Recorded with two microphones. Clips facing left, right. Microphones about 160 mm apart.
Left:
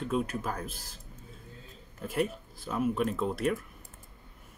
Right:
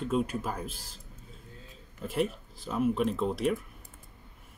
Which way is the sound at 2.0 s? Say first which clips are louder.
Right 1 dB; centre (ahead or behind).